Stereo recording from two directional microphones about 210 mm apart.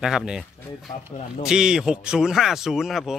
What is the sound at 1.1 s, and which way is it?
Speech, 30° left (ahead or behind).